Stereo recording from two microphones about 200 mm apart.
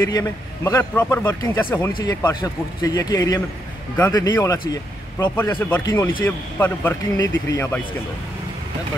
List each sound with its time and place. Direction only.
0.0 s a man's voice: 15° left (ahead or behind)